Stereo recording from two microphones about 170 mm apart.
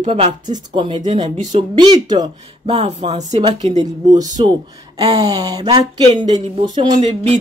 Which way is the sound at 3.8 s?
20° right (ahead or behind).